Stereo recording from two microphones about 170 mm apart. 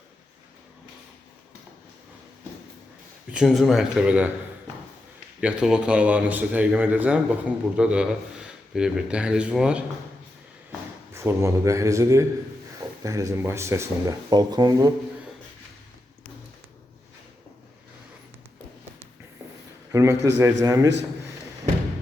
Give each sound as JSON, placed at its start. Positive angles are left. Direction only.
{"t": 3.3, "sound": "speech", "side_deg": 0}
{"t": 5.4, "sound": "a man's voice", "side_deg": -5}
{"t": 11.1, "sound": "a man's voice", "side_deg": -15}
{"t": 19.9, "sound": "a sound", "side_deg": -20}
{"t": 20.2, "sound": "speech", "side_deg": -20}